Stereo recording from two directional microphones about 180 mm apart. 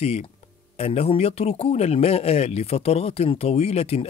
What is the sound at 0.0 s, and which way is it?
A man's voice, 35° left (ahead or behind).